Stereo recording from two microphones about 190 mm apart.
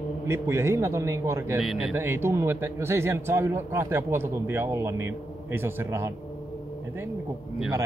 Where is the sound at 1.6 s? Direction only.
Centre (ahead or behind).